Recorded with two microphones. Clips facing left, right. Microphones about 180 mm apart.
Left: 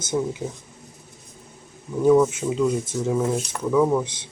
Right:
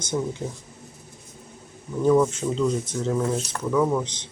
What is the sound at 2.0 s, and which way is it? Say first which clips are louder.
Speech: left 2 dB; 5° left (ahead or behind).